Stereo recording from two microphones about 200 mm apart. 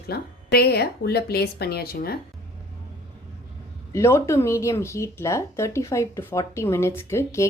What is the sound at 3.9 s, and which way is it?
Speech, 15° left (ahead or behind).